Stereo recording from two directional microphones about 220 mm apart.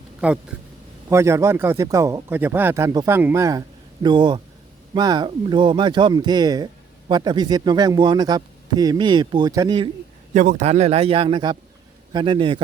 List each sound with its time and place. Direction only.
0.2 s speech: 5° right (ahead or behind)
10.3 s speech: 35° right (ahead or behind)